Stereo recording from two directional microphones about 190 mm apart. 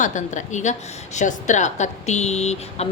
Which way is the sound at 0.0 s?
40° left (ahead or behind).